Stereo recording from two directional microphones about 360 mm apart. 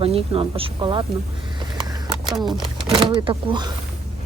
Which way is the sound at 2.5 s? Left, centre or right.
Centre.